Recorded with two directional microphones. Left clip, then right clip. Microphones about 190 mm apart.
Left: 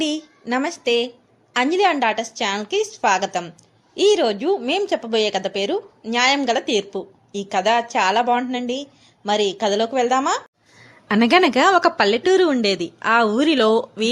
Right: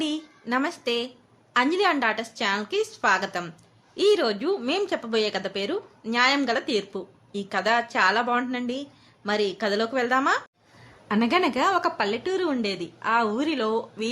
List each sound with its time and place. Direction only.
0.0 s speech: 20° left (ahead or behind)
11.1 s speech: 30° left (ahead or behind)